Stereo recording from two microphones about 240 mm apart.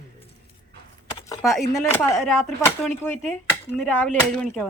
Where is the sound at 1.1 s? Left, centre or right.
Centre.